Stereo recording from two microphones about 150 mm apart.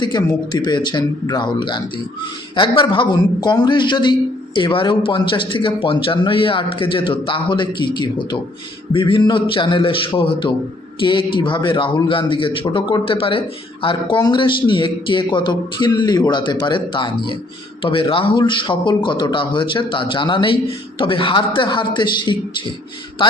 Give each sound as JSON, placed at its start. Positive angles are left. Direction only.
{"t": 0.0, "sound": "speech", "side_deg": 30}